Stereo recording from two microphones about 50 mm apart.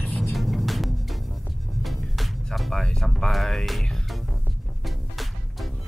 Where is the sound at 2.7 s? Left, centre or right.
Centre.